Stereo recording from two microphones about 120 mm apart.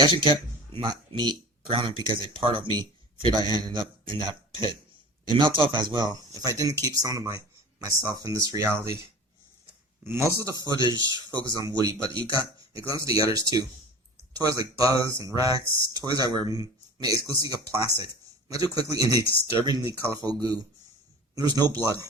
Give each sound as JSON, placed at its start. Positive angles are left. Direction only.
{"t": 0.0, "sound": "speech", "side_deg": -45}
{"t": 10.5, "sound": "speech", "side_deg": -35}
{"t": 20.2, "sound": "speech", "side_deg": -35}